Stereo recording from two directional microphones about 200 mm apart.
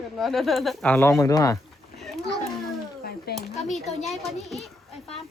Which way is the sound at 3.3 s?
50° left (ahead or behind).